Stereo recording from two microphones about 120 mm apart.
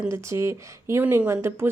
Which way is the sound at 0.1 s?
25° right (ahead or behind).